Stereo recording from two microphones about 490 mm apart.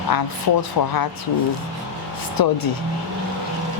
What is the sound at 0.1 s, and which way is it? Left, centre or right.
Speech, left.